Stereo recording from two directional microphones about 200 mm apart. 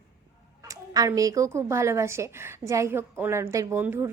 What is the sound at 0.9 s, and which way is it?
A woman's voice, 15° right (ahead or behind).